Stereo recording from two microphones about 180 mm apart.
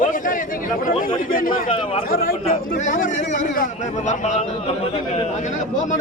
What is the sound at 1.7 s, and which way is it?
Speech, 30° left (ahead or behind).